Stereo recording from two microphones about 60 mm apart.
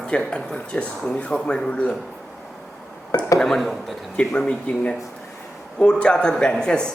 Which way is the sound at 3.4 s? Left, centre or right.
Centre.